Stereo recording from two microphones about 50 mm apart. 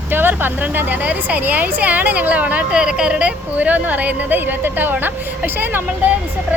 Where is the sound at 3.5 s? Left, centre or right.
Right.